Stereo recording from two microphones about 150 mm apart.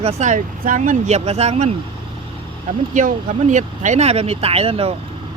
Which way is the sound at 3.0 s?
60° right (ahead or behind).